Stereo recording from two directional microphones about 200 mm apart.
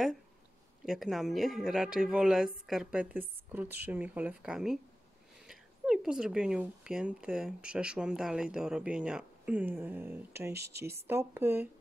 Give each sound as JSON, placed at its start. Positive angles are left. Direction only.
{"t": 0.8, "sound": "speech", "side_deg": 0}
{"t": 10.5, "sound": "speech", "side_deg": -55}
{"t": 11.1, "sound": "speech", "side_deg": -10}